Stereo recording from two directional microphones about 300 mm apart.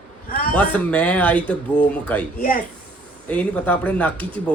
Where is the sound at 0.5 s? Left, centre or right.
Centre.